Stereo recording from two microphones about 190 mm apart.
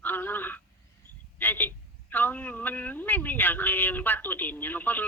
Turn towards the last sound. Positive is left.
turn(degrees=10)  # may be behind; listen again after turning